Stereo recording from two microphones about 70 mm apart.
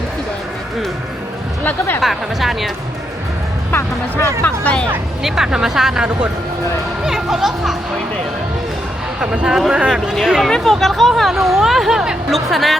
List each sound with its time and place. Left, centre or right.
2.0 s speech: centre
3.7 s speech: left
4.4 s speech: centre
5.2 s speech: centre
9.2 s speech: centre
10.5 s speech: centre